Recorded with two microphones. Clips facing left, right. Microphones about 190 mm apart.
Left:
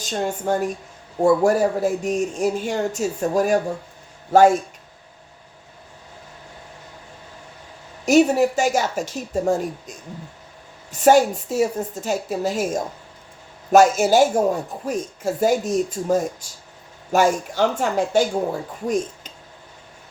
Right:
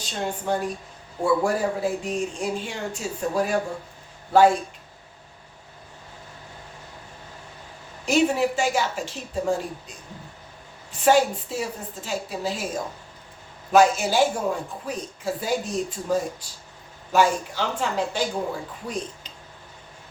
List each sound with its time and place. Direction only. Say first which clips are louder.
0.0 s a woman's voice: left 5 dB; 45° left (ahead or behind)
8.0 s a woman's voice: left 5 dB; 45° left (ahead or behind)
11.0 s a woman's voice: left 4 dB; 45° left (ahead or behind)